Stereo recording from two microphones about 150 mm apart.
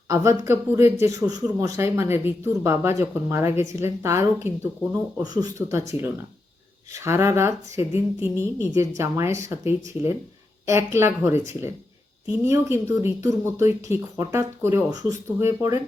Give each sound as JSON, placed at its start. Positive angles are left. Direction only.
{"t": 0.1, "sound": "speech", "side_deg": -20}
{"t": 6.9, "sound": "speech", "side_deg": -15}